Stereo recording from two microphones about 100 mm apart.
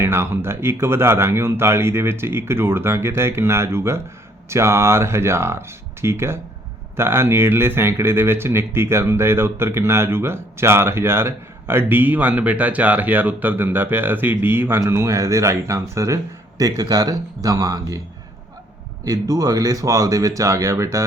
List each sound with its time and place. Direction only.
0.0 s speech: 25° right (ahead or behind)
19.0 s speech: 35° right (ahead or behind)